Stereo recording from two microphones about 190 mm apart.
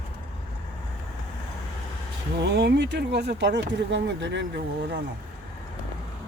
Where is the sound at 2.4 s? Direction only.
65° right (ahead or behind).